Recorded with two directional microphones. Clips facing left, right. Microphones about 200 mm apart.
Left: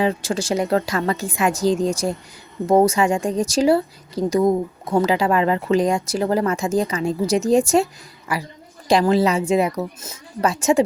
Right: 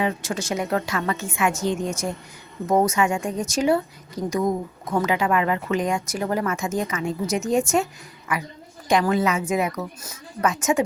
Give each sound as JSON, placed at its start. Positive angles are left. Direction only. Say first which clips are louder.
{"t": 0.0, "sound": "a woman's voice", "louder": "left 4 dB", "side_deg": 30}